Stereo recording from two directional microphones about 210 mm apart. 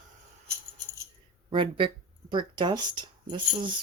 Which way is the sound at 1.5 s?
25° right (ahead or behind).